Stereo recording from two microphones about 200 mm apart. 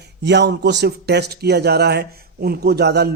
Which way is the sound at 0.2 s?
60° right (ahead or behind).